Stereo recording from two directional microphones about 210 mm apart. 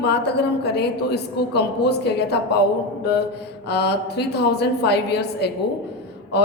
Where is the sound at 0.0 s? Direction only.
55° left (ahead or behind).